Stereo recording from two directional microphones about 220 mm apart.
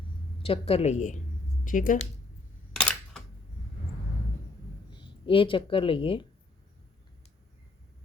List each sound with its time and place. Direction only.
0.4 s a woman's voice: 25° left (ahead or behind)
2.7 s camera: 5° left (ahead or behind)
4.9 s speech: 20° left (ahead or behind)